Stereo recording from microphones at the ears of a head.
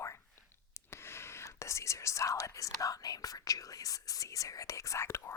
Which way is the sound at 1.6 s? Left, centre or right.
Left.